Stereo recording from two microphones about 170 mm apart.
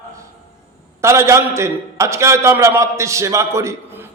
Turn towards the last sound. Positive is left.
turn(degrees=-15)  # may be behind; listen again after turning